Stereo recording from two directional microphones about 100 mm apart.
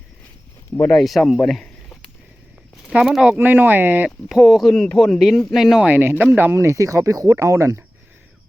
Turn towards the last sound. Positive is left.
turn(degrees=-30)  # may be behind; listen again after turning